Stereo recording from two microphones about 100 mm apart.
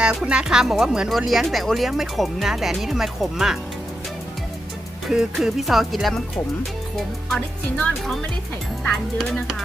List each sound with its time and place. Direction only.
0.0 s speech: 10° right (ahead or behind)
5.0 s speech: 5° right (ahead or behind)